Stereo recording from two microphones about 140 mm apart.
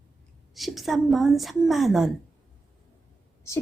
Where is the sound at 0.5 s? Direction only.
Centre (ahead or behind).